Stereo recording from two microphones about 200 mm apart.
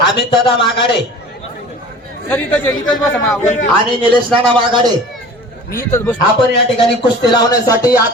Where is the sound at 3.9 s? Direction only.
25° right (ahead or behind).